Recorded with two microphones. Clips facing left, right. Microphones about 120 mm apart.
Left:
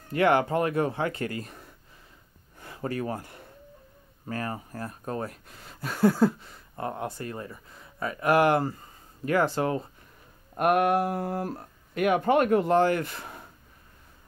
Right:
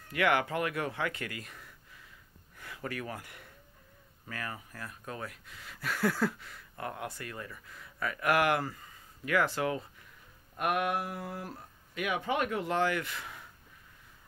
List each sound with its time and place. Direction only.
0.1 s speech: 35° left (ahead or behind)
2.6 s a sound: 30° left (ahead or behind)
4.3 s speech: 35° left (ahead or behind)
10.5 s speech: 45° left (ahead or behind)